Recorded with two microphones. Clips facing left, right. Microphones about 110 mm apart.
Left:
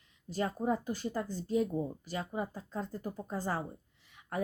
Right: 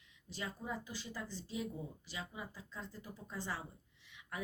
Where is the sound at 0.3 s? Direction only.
45° left (ahead or behind).